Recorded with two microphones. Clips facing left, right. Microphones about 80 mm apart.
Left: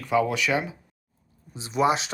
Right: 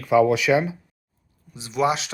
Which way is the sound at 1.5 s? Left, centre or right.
Left.